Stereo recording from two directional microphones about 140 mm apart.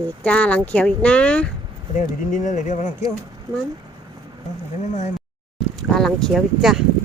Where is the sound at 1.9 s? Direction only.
65° left (ahead or behind).